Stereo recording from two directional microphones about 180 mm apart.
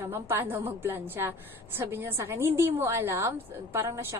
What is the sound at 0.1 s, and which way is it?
A woman's voice, 15° right (ahead or behind).